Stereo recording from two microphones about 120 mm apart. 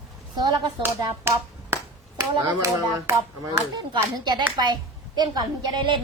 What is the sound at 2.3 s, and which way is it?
A woman's voice, 30° right (ahead or behind).